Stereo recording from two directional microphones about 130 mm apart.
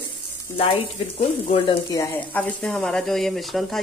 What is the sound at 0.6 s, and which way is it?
Speech, 45° left (ahead or behind).